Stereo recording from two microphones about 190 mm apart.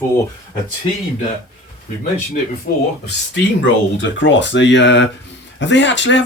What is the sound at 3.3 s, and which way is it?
Speech, 70° left (ahead or behind).